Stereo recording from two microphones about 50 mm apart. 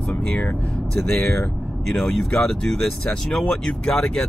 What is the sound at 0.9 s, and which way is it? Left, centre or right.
Speech, centre.